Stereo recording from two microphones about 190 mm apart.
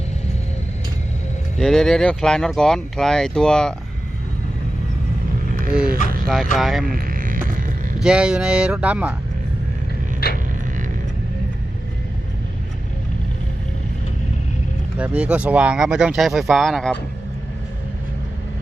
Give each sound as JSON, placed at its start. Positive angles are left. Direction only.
{"t": 1.5, "sound": "speech", "side_deg": 0}
{"t": 6.2, "sound": "speech", "side_deg": 0}
{"t": 6.8, "sound": "a sound", "side_deg": -50}
{"t": 7.9, "sound": "speech", "side_deg": -5}
{"t": 14.9, "sound": "speech", "side_deg": -5}